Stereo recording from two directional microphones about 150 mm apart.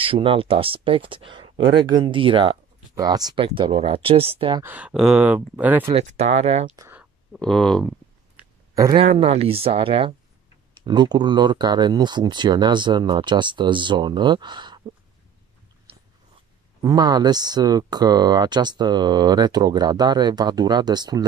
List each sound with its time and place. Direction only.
0.0 s speech: 35° right (ahead or behind)
4.6 s speech: 10° right (ahead or behind)
5.9 s speech: 45° right (ahead or behind)
7.3 s speech: 5° left (ahead or behind)
8.9 s speech: 45° right (ahead or behind)
16.8 s speech: 25° right (ahead or behind)